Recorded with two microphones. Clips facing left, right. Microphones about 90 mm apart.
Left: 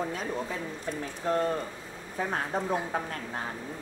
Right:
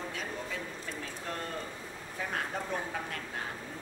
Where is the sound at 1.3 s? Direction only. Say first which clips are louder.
Left 13 dB; 35° left (ahead or behind).